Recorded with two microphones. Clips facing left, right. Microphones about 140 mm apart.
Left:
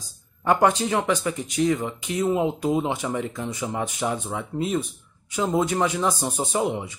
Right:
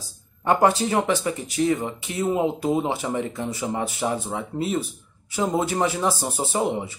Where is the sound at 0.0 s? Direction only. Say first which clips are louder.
Even; 35° right (ahead or behind).